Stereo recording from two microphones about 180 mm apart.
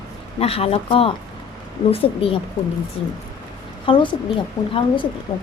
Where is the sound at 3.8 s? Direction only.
30° left (ahead or behind).